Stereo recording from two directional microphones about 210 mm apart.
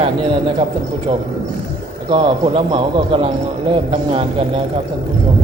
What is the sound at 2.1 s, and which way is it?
Speech, 25° right (ahead or behind).